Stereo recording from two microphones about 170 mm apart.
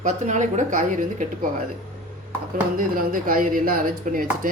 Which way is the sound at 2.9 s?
55° right (ahead or behind).